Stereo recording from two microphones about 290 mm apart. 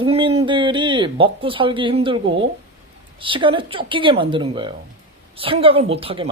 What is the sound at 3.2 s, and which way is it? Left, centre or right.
Speech, centre.